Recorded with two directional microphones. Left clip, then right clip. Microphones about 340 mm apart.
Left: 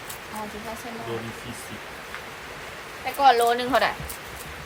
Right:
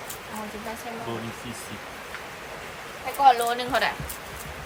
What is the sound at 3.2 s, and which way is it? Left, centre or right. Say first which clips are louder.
Speech: left 1 dB; centre.